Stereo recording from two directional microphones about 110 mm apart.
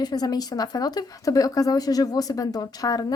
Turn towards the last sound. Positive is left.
turn(degrees=35)  # may be behind; listen again after turning